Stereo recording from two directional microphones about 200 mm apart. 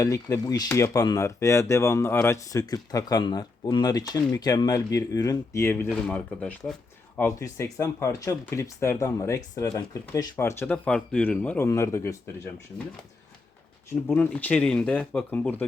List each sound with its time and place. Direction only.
0.0 s speech: 15° left (ahead or behind)
14.1 s speech: 5° left (ahead or behind)